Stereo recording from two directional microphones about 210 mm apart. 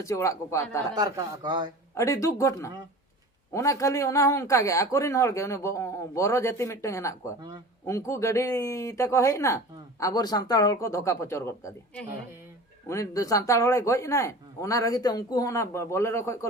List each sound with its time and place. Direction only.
0.0 s a man's voice: 15° left (ahead or behind)
0.9 s speech: 20° right (ahead or behind)
2.0 s a man's voice: 15° left (ahead or behind)